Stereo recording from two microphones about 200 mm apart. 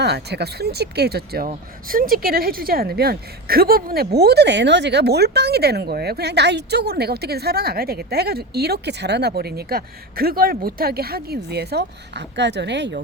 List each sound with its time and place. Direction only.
0.0 s speech: 55° right (ahead or behind)